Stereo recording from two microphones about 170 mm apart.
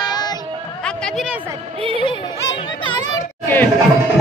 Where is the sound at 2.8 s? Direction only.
25° left (ahead or behind).